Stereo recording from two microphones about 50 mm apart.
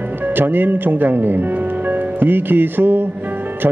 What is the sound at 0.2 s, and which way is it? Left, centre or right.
A man's voice, right.